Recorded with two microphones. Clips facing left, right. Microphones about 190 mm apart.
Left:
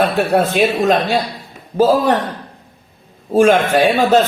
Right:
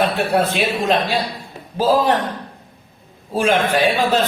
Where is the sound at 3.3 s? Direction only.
50° left (ahead or behind).